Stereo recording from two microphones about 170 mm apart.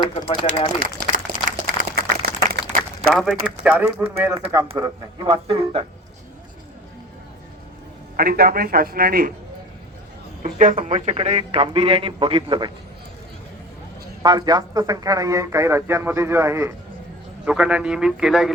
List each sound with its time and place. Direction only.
0.0 s speech: 30° left (ahead or behind)
1.5 s a sound: 60° right (ahead or behind)
3.1 s a man's voice: centre (ahead or behind)
4.8 s speech: 25° right (ahead or behind)
8.1 s a man's voice: 60° right (ahead or behind)
10.4 s a man's voice: 50° right (ahead or behind); by 12.7 s 30° right (ahead or behind)
14.2 s speech: 25° right (ahead or behind)
17.4 s a man's voice: 5° right (ahead or behind)